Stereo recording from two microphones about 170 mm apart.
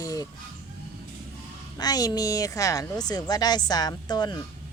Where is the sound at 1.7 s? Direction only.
20° left (ahead or behind).